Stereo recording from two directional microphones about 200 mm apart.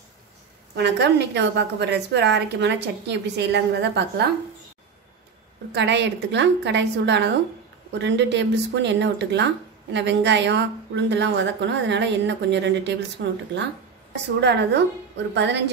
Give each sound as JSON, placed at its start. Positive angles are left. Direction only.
{"t": 0.7, "sound": "a woman's voice", "side_deg": -60}
{"t": 5.7, "sound": "a woman's voice", "side_deg": -60}
{"t": 14.4, "sound": "a woman's voice", "side_deg": -60}